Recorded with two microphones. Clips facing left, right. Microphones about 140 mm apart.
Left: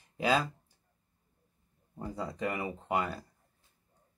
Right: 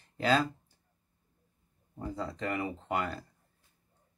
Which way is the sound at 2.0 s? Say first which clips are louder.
Left 1 dB; 10° left (ahead or behind).